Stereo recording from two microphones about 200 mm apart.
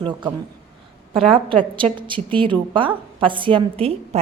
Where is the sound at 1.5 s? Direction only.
25° right (ahead or behind).